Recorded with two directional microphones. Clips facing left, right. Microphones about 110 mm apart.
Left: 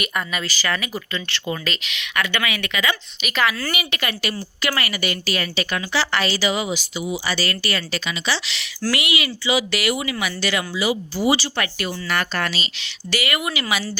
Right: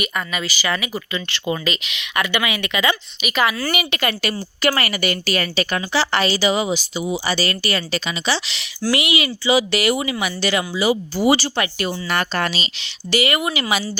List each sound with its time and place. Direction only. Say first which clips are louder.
0.0 s speech: right 1 dB; centre (ahead or behind); by 2.9 s 20° right (ahead or behind)
3.2 s speech: even; 10° right (ahead or behind)
3.9 s a woman's voice: right 4 dB; 40° right (ahead or behind)
5.9 s speech: right 3 dB; 25° right (ahead or behind)